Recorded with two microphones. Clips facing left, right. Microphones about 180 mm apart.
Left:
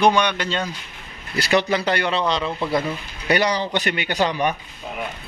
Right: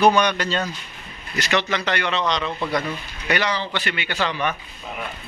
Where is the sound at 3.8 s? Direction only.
45° left (ahead or behind).